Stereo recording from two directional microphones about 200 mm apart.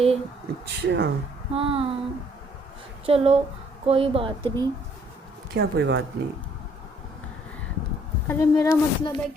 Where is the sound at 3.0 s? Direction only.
30° right (ahead or behind).